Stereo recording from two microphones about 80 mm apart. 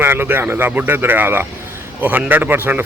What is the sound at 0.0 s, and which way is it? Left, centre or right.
Speech, right.